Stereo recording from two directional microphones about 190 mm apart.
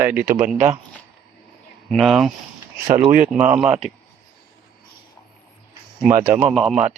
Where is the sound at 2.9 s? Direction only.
45° right (ahead or behind).